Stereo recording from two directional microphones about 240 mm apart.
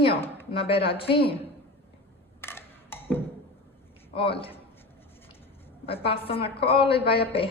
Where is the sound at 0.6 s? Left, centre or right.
Left.